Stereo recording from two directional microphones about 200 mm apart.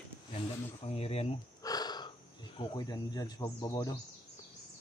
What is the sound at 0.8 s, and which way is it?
Speech, 30° left (ahead or behind).